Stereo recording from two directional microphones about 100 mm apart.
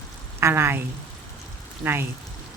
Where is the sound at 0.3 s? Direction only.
25° right (ahead or behind).